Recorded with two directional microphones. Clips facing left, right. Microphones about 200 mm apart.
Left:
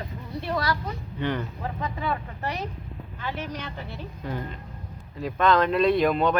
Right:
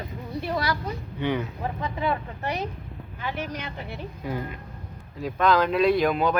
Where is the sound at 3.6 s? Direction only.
10° right (ahead or behind).